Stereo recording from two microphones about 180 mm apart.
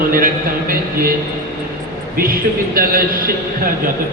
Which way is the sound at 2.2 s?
55° right (ahead or behind).